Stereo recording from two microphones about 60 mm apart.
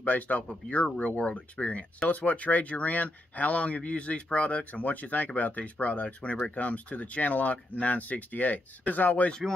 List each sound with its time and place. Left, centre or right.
0.0 s speech: left